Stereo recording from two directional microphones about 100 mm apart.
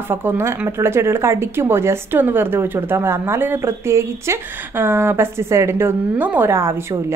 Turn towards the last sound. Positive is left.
turn(degrees=-25)  # may be behind; listen again after turning